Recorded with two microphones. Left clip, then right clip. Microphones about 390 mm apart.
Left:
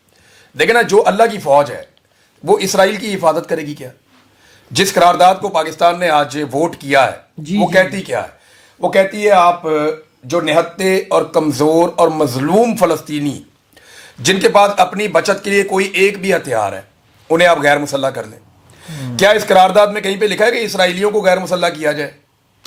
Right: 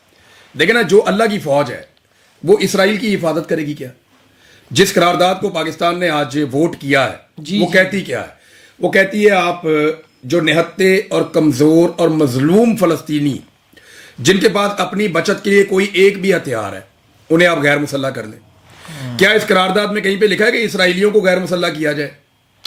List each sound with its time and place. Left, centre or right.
0.5 s speech: left